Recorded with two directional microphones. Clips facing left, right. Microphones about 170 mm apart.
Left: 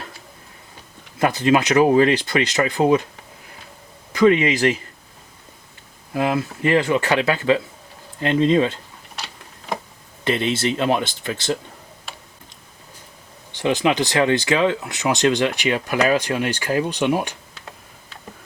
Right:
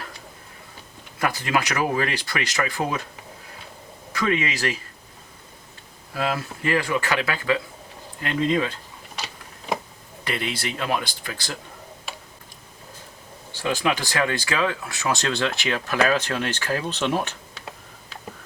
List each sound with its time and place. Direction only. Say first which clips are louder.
1.2 s speech: left 7 dB; 20° left (ahead or behind)
4.1 s speech: left 9 dB; 20° left (ahead or behind)
6.1 s speech: left 5 dB; 20° left (ahead or behind)
9.1 s a sound: even; centre (ahead or behind)
10.2 s speech: left 8 dB; 25° left (ahead or behind)
13.5 s speech: left 5 dB; 20° left (ahead or behind)